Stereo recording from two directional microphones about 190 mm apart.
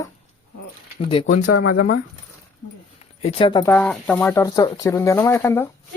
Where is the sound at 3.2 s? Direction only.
25° left (ahead or behind).